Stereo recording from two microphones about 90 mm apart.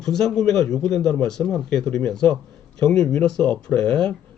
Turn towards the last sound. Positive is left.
turn(degrees=10)  # may be behind; listen again after turning